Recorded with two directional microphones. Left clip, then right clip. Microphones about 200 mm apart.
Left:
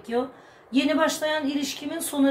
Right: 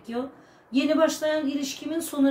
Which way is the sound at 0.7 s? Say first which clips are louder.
Even; 15° left (ahead or behind).